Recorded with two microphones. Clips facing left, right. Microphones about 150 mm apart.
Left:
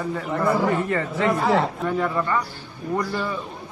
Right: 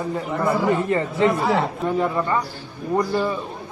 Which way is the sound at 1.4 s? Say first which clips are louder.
Even; 10° right (ahead or behind).